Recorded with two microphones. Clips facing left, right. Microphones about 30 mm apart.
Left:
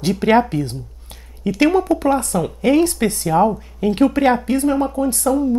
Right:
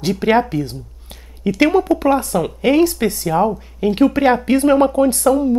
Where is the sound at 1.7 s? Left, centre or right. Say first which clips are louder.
Right 1 dB; centre.